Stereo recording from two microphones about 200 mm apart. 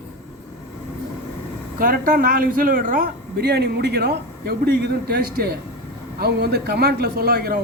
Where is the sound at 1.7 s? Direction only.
45° right (ahead or behind).